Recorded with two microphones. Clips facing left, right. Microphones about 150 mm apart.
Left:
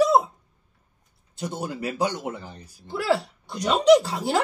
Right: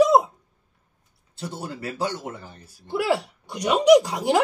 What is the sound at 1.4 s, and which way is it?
Speech, 15° left (ahead or behind).